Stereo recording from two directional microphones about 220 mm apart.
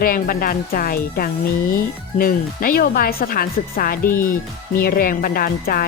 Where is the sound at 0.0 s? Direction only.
40° left (ahead or behind).